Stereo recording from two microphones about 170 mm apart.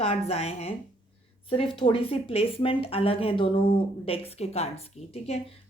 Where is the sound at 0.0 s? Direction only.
40° left (ahead or behind).